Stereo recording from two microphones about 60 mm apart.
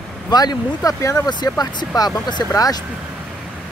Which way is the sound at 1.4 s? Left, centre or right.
Left.